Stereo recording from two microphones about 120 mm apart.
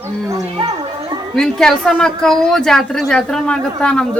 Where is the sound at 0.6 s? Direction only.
40° right (ahead or behind).